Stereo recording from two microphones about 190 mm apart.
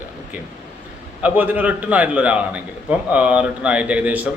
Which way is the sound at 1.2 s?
10° right (ahead or behind).